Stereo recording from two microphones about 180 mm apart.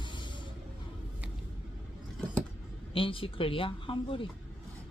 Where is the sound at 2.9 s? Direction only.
30° left (ahead or behind).